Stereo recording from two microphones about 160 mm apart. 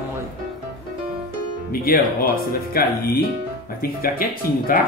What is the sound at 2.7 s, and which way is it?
Speech, 65° left (ahead or behind).